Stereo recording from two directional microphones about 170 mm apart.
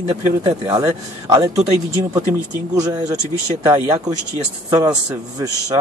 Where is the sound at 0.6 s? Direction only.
20° right (ahead or behind).